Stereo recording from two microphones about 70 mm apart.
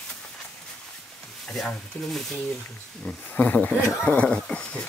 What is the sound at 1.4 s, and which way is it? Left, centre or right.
Speech, centre.